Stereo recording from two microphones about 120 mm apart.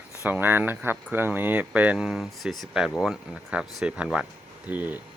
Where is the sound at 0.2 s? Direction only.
15° right (ahead or behind).